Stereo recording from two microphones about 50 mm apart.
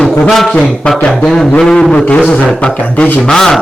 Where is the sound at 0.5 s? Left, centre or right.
Centre.